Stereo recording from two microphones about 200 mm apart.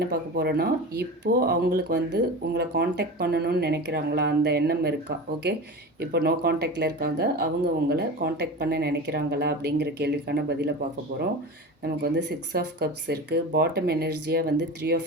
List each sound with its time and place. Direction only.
0.1 s speech: 55° right (ahead or behind)
11.8 s speech: 50° right (ahead or behind)